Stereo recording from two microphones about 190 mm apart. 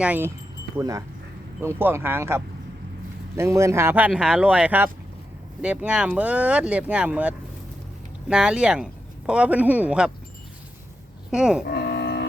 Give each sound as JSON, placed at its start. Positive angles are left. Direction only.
{"t": 0.0, "sound": "speech", "side_deg": -10}
{"t": 11.3, "sound": "speech", "side_deg": -5}
{"t": 11.6, "sound": "livestock", "side_deg": 55}